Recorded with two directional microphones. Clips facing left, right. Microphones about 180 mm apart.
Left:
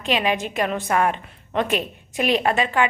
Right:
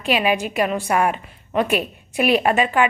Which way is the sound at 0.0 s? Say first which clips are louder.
Right 2 dB; 10° right (ahead or behind).